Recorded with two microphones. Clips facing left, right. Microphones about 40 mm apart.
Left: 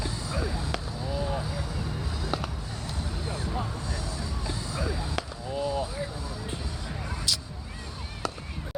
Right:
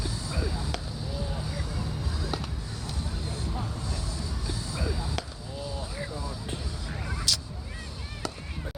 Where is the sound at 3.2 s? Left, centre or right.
Left.